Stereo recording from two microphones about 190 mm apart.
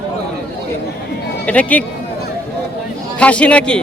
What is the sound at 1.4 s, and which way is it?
Speech, 5° left (ahead or behind).